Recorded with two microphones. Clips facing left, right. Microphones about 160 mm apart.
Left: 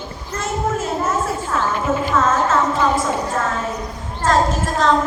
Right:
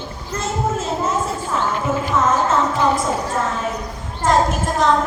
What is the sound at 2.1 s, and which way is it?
Music, 15° right (ahead or behind).